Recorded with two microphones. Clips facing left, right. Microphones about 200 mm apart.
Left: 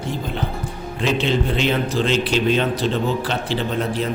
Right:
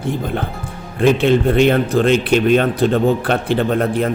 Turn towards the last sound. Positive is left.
turn(degrees=-55)  # may be behind; listen again after turning